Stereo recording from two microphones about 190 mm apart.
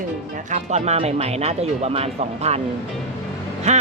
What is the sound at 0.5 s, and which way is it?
Speech, 35° right (ahead or behind).